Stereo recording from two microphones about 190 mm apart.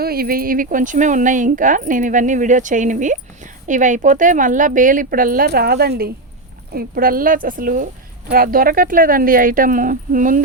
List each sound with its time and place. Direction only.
0.0 s speech: 55° right (ahead or behind)